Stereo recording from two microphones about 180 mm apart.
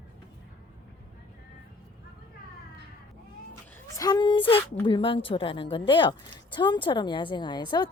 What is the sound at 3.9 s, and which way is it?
A woman's voice, 20° left (ahead or behind).